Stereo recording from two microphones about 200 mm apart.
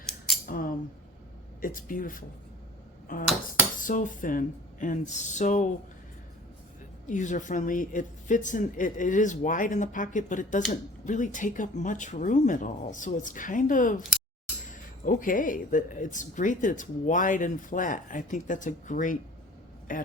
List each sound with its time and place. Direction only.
0.4 s a sound: 40° left (ahead or behind)
1.6 s speech: 45° left (ahead or behind)
7.1 s speech: 40° left (ahead or behind)
15.0 s speech: 40° left (ahead or behind)